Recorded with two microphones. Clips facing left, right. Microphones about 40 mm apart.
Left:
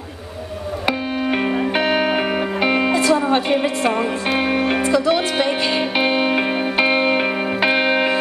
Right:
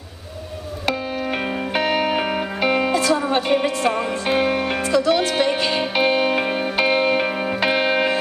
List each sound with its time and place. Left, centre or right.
0.8 s music: centre